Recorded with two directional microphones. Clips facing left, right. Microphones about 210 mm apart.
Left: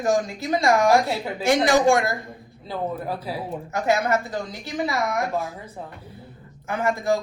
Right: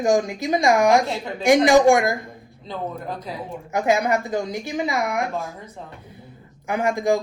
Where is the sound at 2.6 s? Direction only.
10° left (ahead or behind).